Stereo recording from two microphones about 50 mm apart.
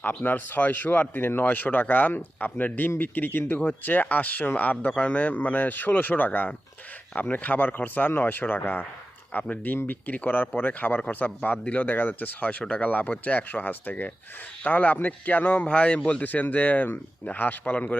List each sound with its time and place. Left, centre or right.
0.0 s speech: left